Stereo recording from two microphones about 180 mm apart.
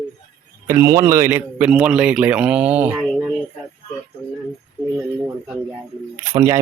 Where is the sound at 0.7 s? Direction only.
15° right (ahead or behind).